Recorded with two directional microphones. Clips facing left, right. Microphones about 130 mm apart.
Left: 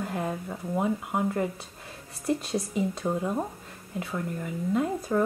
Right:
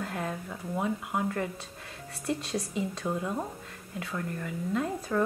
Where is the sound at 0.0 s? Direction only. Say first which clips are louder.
Left 3 dB; 20° left (ahead or behind).